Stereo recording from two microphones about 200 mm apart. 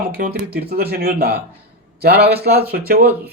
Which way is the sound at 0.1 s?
50° right (ahead or behind).